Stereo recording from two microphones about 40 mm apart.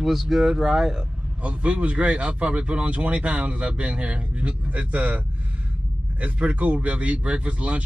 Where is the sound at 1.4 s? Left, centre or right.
Right.